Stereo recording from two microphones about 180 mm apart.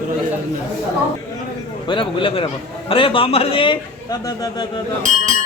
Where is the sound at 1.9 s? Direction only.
25° left (ahead or behind).